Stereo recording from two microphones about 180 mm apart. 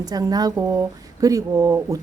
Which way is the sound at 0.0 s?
20° right (ahead or behind).